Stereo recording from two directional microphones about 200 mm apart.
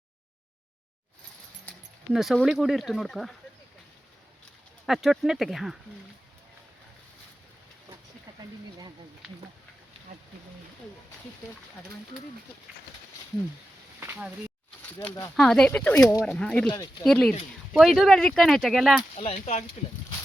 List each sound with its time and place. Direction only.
2.1 s speech: centre (ahead or behind)
4.9 s speech: centre (ahead or behind)
14.0 s a sound: 10° right (ahead or behind)
14.9 s speech: 15° left (ahead or behind)
15.4 s speech: 5° left (ahead or behind)
19.1 s speech: 30° left (ahead or behind)